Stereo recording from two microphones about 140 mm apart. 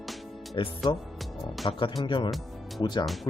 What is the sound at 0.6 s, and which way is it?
Speech, 35° left (ahead or behind).